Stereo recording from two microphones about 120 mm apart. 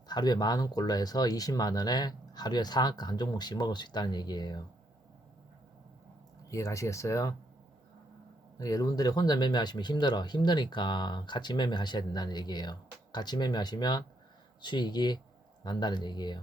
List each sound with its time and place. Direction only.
0.1 s speech: 35° left (ahead or behind)
6.5 s speech: 25° left (ahead or behind)
8.5 s speech: 30° left (ahead or behind)